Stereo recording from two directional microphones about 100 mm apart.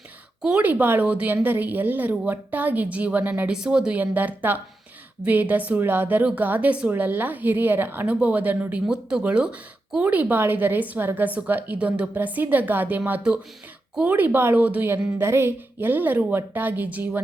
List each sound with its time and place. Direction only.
0.4 s a woman's voice: 15° right (ahead or behind)